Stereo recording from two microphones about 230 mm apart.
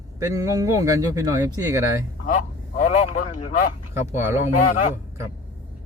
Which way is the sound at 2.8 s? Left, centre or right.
Left.